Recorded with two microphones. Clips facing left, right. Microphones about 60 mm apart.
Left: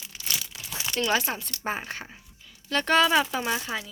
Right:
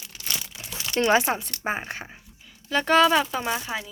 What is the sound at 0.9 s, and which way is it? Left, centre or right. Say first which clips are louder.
Speech: right 5 dB; right.